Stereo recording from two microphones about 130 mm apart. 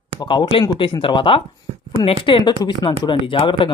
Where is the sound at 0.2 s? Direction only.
35° left (ahead or behind).